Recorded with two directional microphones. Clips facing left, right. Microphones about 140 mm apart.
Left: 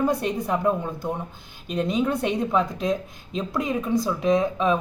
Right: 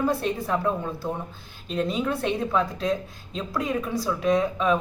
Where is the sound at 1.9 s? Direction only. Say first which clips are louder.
Left 4 dB; 20° left (ahead or behind).